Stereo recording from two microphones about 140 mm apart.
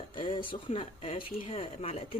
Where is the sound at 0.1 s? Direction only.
35° left (ahead or behind).